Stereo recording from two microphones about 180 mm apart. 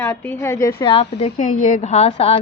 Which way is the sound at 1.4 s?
45° left (ahead or behind).